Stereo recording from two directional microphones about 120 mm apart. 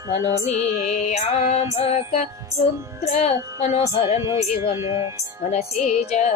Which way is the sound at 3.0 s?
65° left (ahead or behind).